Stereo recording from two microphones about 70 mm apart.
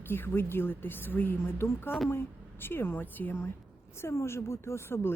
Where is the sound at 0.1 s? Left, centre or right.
Left.